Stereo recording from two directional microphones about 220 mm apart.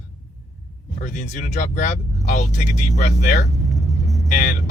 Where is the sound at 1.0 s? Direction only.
35° left (ahead or behind).